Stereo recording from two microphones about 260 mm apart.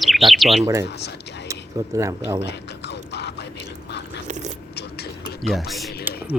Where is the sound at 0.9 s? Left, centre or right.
Left.